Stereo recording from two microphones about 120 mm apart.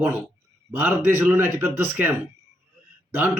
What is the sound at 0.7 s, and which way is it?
A man's voice, 15° right (ahead or behind).